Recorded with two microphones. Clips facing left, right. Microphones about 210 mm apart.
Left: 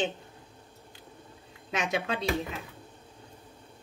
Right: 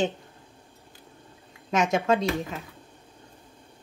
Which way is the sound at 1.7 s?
45° right (ahead or behind).